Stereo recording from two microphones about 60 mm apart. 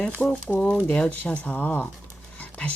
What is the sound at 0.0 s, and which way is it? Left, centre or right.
Speech, centre.